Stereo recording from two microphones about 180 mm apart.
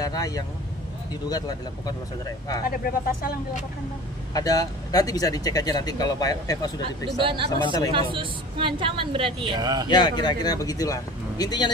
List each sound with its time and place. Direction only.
0.0 s speech: 20° left (ahead or behind)
2.7 s speech: 50° left (ahead or behind)
4.3 s speech: 20° left (ahead or behind)
7.2 s a woman's voice: 25° right (ahead or behind)
7.6 s speech: 20° left (ahead or behind)
7.9 s a woman's voice: 30° right (ahead or behind)
9.8 s speech: 25° left (ahead or behind)